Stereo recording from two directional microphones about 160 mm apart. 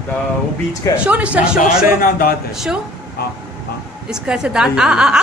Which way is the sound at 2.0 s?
65° left (ahead or behind).